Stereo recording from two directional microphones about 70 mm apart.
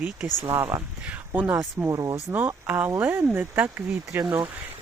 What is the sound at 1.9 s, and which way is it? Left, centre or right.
Speech, right.